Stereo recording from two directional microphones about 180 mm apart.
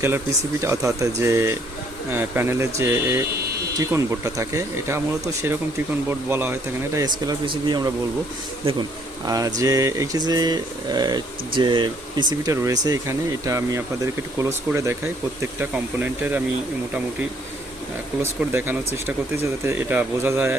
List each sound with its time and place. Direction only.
0.6 s speech: 15° right (ahead or behind)
9.2 s speech: 20° right (ahead or behind)
16.0 s speech: 10° right (ahead or behind)
18.2 s speech: 10° right (ahead or behind)